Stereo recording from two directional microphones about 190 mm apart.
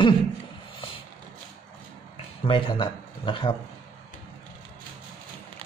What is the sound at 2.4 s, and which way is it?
Speech, 25° left (ahead or behind).